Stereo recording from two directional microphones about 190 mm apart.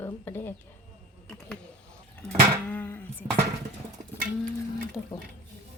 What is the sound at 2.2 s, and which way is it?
Speech, 10° left (ahead or behind).